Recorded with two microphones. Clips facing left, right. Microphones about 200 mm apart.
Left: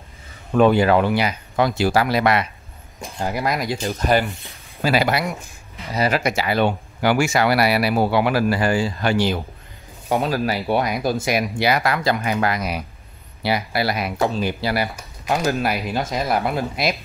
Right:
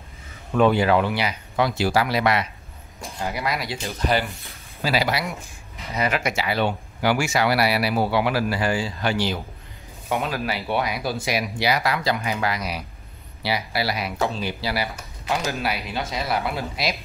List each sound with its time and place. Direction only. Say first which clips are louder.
0.6 s speech: left 3 dB; 45° left (ahead or behind)
5.9 s speech: left 4 dB; 35° left (ahead or behind); by 9.4 s 50° left (ahead or behind)
10.1 s speech: left 5 dB; 35° left (ahead or behind)